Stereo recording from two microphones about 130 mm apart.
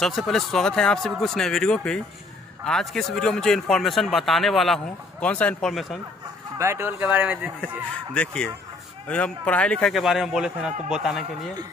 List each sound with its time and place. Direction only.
0.0 s a man's voice: centre (ahead or behind)
6.6 s speech: 20° right (ahead or behind)
8.1 s a man's voice: 5° left (ahead or behind)